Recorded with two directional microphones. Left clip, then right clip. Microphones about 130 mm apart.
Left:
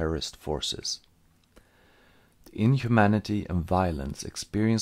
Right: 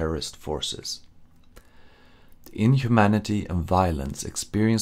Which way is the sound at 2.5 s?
25° left (ahead or behind).